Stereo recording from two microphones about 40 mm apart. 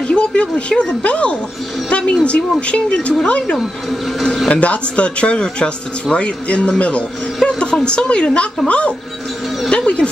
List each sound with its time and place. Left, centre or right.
0.1 s a woman's voice: left